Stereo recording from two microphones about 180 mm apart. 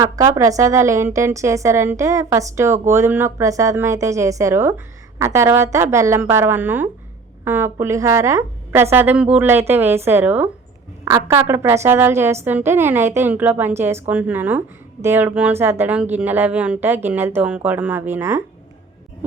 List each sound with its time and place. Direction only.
0.0 s speech: 20° right (ahead or behind)